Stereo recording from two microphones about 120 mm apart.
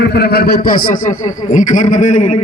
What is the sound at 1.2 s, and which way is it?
A man's voice, 90° left.